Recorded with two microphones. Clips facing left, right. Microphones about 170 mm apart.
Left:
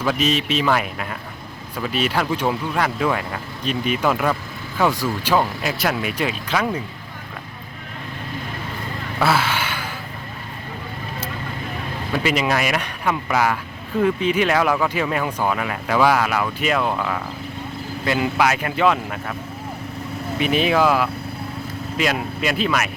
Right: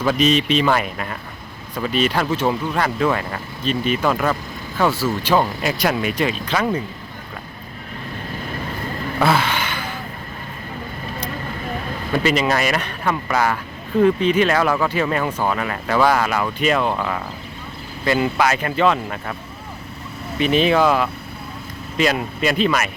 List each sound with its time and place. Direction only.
0.1 s speech: 5° left (ahead or behind)
5.2 s speech: 5° left (ahead or behind)
9.2 s a sound: 5° left (ahead or behind)
12.1 s speech: 5° left (ahead or behind)
20.4 s speech: 5° left (ahead or behind)